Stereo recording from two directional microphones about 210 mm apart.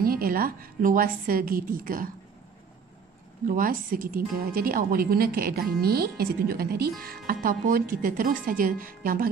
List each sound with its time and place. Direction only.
0.0 s a woman's voice: 45° right (ahead or behind)
3.4 s a woman's voice: 40° right (ahead or behind)